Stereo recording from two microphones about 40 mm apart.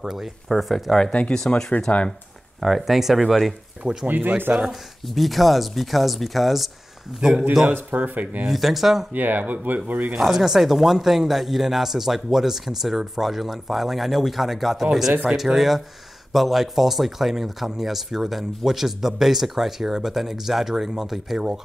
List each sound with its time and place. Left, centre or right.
0.5 s speech: centre
1.5 s speech: left
2.6 s speech: centre
3.8 s speech: right
4.6 s speech: centre
7.2 s speech: centre
7.7 s speech: right
8.5 s speech: centre
9.1 s speech: right
10.2 s speech: centre